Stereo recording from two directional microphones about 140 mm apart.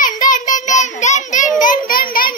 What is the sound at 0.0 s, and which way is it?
Child singing, 70° left (ahead or behind).